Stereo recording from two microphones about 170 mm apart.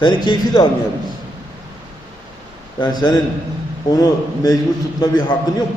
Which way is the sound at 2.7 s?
25° left (ahead or behind).